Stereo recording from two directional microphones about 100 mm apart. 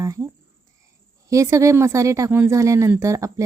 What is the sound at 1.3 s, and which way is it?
Speech, 30° right (ahead or behind).